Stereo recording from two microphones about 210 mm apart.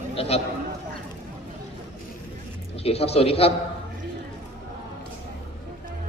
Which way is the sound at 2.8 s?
30° left (ahead or behind).